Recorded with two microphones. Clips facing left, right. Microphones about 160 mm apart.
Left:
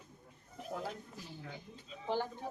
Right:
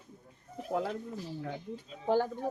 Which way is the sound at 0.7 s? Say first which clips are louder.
Right 9 dB; 90° right.